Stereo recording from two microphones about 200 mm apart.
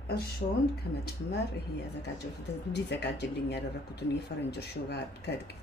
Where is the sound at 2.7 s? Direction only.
55° left (ahead or behind).